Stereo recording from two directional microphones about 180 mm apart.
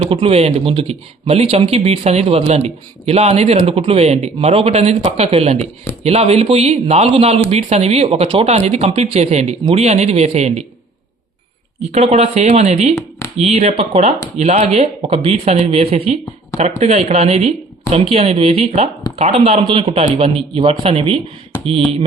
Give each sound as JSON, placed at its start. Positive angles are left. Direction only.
{"t": 0.1, "sound": "speech", "side_deg": -30}
{"t": 11.9, "sound": "speech", "side_deg": -35}
{"t": 13.0, "sound": "a sound", "side_deg": 15}
{"t": 13.3, "sound": "speech", "side_deg": -35}